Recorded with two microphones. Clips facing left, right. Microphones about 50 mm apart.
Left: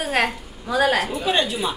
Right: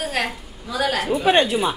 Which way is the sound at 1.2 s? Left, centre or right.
Right.